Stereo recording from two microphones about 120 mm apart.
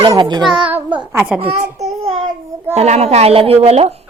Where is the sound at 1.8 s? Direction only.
50° right (ahead or behind).